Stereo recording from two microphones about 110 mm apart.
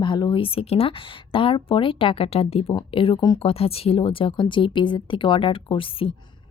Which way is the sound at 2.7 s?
55° left (ahead or behind).